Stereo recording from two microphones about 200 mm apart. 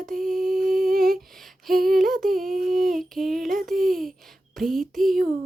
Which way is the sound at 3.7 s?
Centre (ahead or behind).